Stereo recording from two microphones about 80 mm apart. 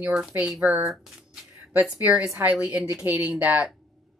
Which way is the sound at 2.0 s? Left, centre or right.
Centre.